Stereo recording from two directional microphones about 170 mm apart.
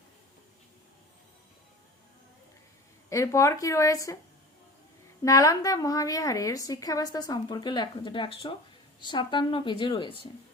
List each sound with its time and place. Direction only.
3.1 s speech: 20° left (ahead or behind)
5.2 s a woman's voice: 20° left (ahead or behind)